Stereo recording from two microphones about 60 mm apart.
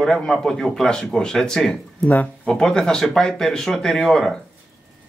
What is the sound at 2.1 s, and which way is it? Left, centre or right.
Speech, left.